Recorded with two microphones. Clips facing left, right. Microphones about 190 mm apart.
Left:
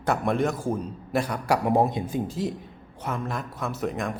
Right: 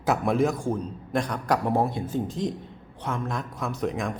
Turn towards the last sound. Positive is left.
turn(degrees=0)  # may be behind; listen again after turning